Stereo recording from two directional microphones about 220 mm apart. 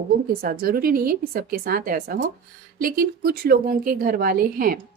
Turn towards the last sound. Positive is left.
turn(degrees=-40)  # may be behind; listen again after turning